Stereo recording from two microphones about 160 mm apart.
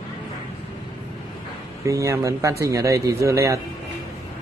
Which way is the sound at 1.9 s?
20° right (ahead or behind).